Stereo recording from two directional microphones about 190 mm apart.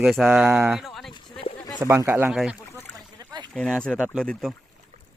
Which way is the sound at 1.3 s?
25° left (ahead or behind).